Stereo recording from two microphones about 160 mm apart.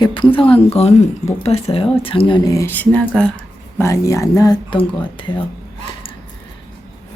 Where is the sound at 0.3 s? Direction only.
35° left (ahead or behind).